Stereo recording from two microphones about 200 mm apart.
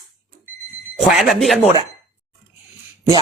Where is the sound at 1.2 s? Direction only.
Centre (ahead or behind).